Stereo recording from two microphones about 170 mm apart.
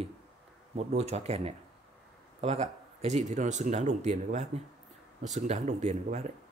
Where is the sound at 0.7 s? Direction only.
40° right (ahead or behind).